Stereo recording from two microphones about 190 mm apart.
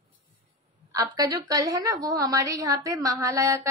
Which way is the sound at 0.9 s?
20° right (ahead or behind).